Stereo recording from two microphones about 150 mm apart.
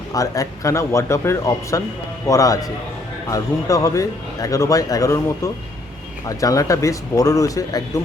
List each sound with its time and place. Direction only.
0.1 s speech: 20° left (ahead or behind)